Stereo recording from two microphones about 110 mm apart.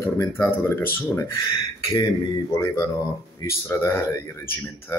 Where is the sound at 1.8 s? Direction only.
30° left (ahead or behind).